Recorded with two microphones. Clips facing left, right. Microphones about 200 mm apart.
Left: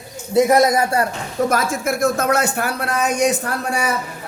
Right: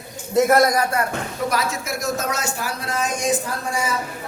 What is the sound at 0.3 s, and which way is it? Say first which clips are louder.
Speech: left 2 dB; 15° left (ahead or behind).